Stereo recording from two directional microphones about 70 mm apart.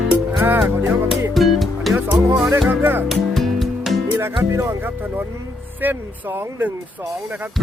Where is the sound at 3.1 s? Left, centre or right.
Centre.